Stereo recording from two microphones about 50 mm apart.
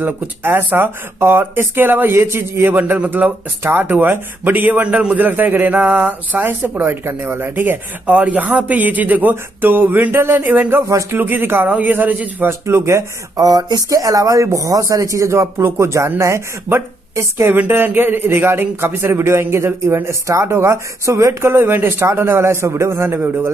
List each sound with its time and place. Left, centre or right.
0.0 s speech: right
3.6 s speech: right
4.5 s speech: right
6.8 s speech: right
8.1 s speech: right
12.4 s speech: right
13.8 s a woman's voice: right
17.5 s speech: right